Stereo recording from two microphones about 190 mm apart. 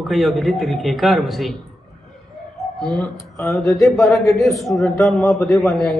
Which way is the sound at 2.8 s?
Centre (ahead or behind).